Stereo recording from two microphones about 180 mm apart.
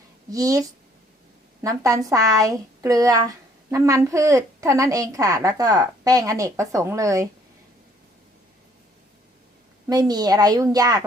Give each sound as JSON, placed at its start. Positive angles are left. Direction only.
{"t": 0.3, "sound": "a woman's voice", "side_deg": -20}
{"t": 9.8, "sound": "a woman's voice", "side_deg": -20}